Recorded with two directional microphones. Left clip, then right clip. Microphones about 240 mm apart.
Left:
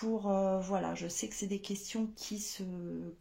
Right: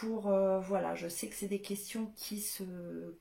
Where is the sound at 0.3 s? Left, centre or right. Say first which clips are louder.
Right 3 dB; left.